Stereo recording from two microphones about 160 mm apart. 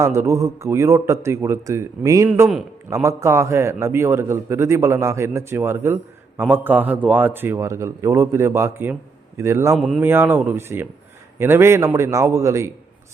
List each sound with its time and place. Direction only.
0.0 s a man's voice: 20° right (ahead or behind)
9.7 s speech: 5° right (ahead or behind)
10.0 s a man's voice: 15° right (ahead or behind)